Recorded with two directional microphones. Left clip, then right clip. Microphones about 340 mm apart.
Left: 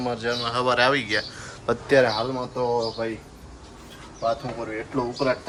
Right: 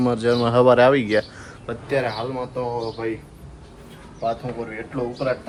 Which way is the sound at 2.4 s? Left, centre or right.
Centre.